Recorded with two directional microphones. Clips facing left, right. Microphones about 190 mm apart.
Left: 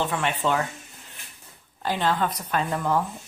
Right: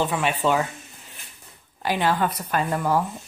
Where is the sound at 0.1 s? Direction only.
10° right (ahead or behind).